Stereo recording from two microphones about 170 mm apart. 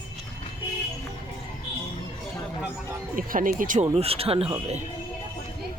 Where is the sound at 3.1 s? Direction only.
55° right (ahead or behind).